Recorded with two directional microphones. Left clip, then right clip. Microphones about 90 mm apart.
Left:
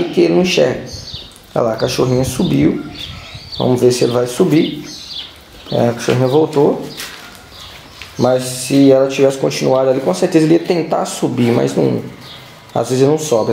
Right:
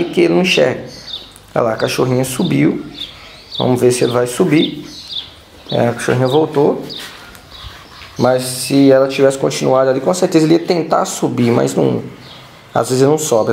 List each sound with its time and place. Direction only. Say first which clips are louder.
0.1 s speech: even; 20° right (ahead or behind)
5.8 s speech: even; 20° right (ahead or behind)
8.3 s speech: even; 5° right (ahead or behind)
9.2 s speech: even; 20° right (ahead or behind)